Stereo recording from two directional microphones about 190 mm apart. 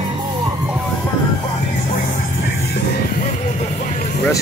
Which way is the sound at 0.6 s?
5° right (ahead or behind).